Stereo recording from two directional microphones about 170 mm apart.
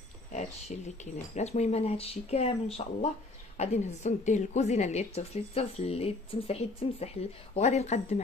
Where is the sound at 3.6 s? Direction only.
40° left (ahead or behind).